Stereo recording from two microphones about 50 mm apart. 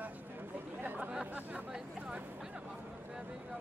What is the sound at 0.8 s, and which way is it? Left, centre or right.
Speech, right.